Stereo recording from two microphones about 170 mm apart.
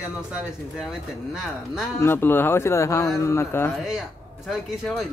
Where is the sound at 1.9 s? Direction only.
15° left (ahead or behind).